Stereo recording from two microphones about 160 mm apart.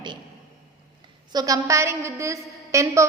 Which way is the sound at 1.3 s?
20° right (ahead or behind).